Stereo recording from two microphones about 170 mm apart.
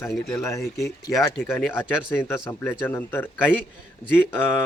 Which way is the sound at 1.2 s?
15° left (ahead or behind).